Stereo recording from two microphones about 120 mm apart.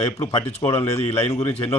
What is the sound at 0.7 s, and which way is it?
Speech, 65° left (ahead or behind).